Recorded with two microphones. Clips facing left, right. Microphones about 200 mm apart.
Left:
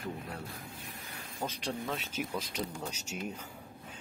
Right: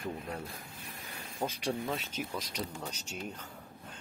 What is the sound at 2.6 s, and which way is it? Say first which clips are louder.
Speech: left 1 dB; centre (ahead or behind).